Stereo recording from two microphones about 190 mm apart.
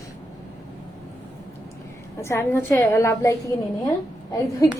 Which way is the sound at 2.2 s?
15° left (ahead or behind).